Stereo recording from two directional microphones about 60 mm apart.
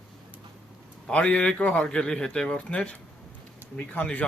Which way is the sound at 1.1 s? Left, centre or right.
Centre.